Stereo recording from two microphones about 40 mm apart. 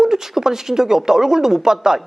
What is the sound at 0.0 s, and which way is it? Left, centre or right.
Speech, centre.